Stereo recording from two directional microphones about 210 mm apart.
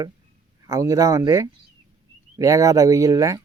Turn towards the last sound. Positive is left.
turn(degrees=-15)  # may be behind; listen again after turning